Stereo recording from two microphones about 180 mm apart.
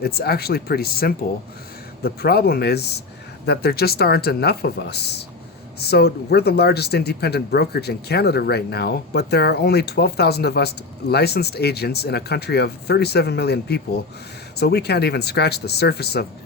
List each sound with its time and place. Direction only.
0.0 s speech: 60° left (ahead or behind)